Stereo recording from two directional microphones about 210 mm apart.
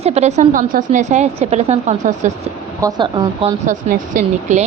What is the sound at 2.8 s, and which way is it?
Speech, 20° right (ahead or behind).